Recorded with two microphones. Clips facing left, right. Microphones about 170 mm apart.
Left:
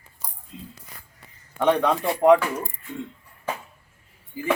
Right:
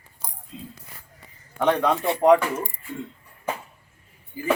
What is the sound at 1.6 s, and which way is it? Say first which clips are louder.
Speech: left 1 dB; 5° left (ahead or behind).